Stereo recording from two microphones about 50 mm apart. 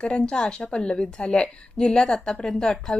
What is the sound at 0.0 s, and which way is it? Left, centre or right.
A woman's voice, left.